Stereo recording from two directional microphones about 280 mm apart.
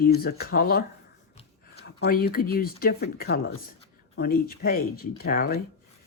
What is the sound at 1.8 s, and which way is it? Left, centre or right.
Speech, left.